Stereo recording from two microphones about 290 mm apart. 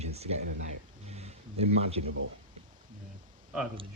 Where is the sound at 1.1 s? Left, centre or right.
Right.